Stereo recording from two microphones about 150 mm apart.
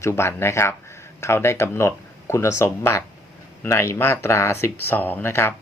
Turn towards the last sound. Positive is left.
turn(degrees=15)  # may be behind; listen again after turning